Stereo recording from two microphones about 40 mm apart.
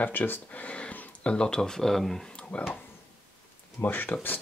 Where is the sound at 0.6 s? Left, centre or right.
Left; by 2.2 s centre.